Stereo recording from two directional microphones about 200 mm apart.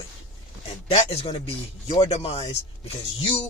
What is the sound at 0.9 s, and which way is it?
Speech, 30° left (ahead or behind).